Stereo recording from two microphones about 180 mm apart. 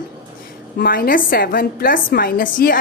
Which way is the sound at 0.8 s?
55° left (ahead or behind).